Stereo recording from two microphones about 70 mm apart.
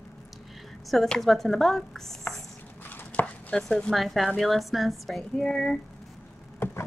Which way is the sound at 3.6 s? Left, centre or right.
Centre.